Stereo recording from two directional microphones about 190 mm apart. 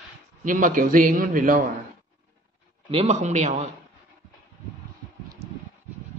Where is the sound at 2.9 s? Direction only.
35° right (ahead or behind).